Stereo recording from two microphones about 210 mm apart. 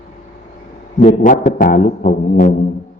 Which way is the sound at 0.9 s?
40° left (ahead or behind).